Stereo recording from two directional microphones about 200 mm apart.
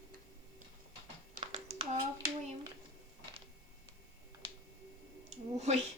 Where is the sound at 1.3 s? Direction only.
30° right (ahead or behind).